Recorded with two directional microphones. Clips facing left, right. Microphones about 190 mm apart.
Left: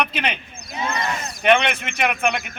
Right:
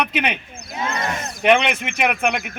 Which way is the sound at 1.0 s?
50° right (ahead or behind).